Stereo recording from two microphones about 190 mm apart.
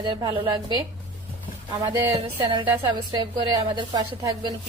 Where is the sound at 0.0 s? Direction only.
20° right (ahead or behind).